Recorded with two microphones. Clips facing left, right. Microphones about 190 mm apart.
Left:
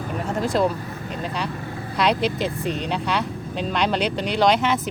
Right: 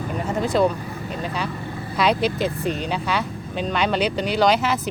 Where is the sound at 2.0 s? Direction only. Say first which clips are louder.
Right 1 dB; centre (ahead or behind).